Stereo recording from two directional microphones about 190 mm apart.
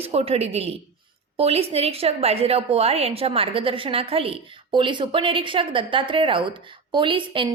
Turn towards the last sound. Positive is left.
turn(degrees=-25)  # may be behind; listen again after turning